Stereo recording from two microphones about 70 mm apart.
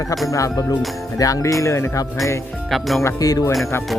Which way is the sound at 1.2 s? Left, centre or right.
Left.